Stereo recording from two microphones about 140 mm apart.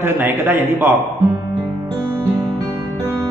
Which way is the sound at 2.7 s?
20° right (ahead or behind).